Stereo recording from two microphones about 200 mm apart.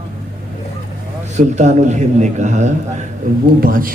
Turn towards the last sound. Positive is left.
turn(degrees=-45)  # may be behind; listen again after turning